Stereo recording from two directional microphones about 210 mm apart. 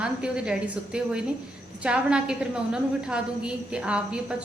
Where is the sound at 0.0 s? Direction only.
5° right (ahead or behind).